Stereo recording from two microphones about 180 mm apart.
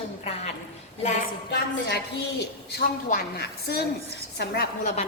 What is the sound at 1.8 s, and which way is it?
A woman's voice, 70° left (ahead or behind).